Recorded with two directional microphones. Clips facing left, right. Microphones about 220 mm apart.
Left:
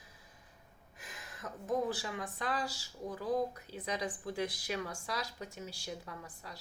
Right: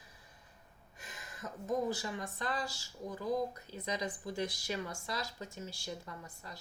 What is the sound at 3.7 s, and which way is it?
Speech, 5° left (ahead or behind).